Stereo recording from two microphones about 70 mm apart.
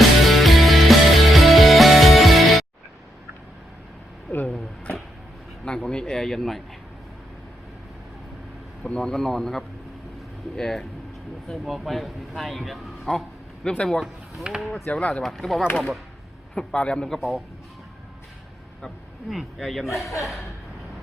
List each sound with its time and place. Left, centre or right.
0.3 s music: centre
4.3 s a sound: left
4.5 s a sound: centre
5.6 s speech: centre
8.9 s speech: centre
14.5 s speech: centre
14.8 s speech: centre
15.2 s speech: centre
16.6 s speech: centre
19.3 s speech: centre